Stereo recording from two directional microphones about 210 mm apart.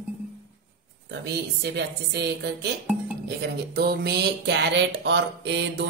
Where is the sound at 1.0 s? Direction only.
50° right (ahead or behind).